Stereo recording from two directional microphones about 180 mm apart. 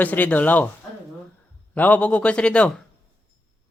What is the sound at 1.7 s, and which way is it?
A man's voice, 10° left (ahead or behind).